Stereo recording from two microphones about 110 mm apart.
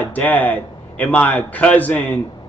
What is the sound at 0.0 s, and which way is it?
A man's voice, 15° left (ahead or behind).